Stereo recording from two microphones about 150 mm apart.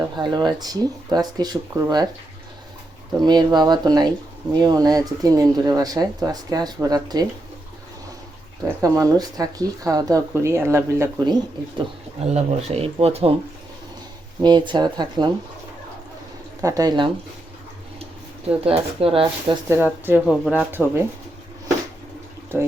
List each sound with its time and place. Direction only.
0.2 s speech: 30° right (ahead or behind)
3.2 s speech: 30° right (ahead or behind)
8.8 s speech: 25° right (ahead or behind)
12.2 s speech: 45° right (ahead or behind)
14.4 s speech: 30° right (ahead or behind)
16.6 s speech: 25° right (ahead or behind)
18.0 s speech: 40° right (ahead or behind)
19.6 s speech: 15° right (ahead or behind)